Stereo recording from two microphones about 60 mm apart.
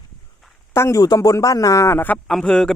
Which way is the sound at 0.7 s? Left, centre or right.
Left.